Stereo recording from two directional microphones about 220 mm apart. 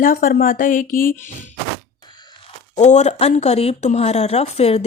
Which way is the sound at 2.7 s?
30° left (ahead or behind).